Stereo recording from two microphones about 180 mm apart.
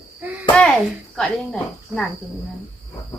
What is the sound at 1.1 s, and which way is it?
Speech, centre (ahead or behind).